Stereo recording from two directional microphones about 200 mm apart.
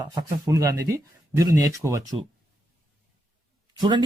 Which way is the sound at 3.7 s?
20° right (ahead or behind).